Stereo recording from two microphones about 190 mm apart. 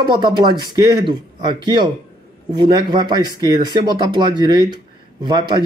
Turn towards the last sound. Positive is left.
turn(degrees=-25)  # may be behind; listen again after turning